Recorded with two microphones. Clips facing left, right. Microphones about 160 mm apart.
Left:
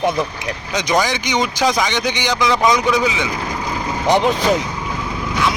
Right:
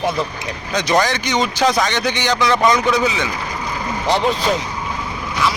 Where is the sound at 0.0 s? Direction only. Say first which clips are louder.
Left 2 dB; 15° left (ahead or behind).